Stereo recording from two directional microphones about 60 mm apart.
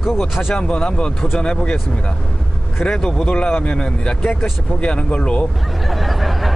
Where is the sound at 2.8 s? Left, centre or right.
Centre.